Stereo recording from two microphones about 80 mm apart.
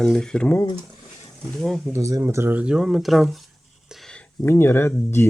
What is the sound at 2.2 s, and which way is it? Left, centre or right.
Speech, right.